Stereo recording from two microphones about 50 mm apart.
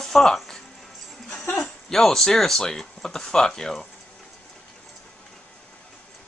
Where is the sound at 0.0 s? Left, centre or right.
Centre.